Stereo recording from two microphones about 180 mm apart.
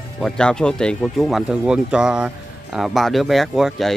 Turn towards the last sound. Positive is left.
turn(degrees=0)  # may be behind; listen again after turning